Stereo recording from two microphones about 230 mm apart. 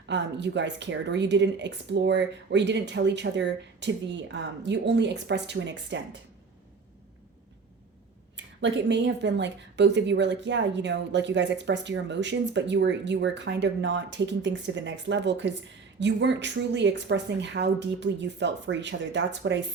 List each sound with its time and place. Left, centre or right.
0.1 s a woman's voice: right
8.6 s a woman's voice: right